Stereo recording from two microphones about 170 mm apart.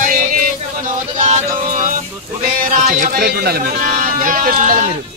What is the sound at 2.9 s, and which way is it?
Speech, 55° right (ahead or behind).